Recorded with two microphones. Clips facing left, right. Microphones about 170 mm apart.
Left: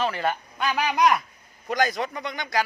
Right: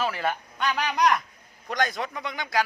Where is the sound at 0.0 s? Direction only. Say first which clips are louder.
Left 2 dB; centre (ahead or behind).